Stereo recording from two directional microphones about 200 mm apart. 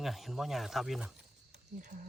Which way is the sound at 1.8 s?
40° right (ahead or behind).